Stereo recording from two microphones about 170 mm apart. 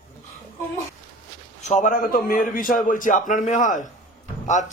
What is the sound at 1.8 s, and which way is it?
A man's voice, 55° left (ahead or behind).